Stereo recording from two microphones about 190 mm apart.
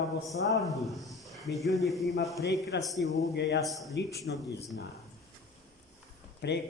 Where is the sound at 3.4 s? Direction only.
65° left (ahead or behind).